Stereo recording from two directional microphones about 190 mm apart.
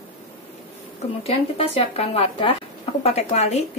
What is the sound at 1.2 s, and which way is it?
A woman's voice, 30° left (ahead or behind).